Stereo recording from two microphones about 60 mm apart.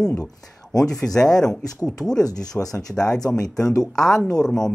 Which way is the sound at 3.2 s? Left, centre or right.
Left.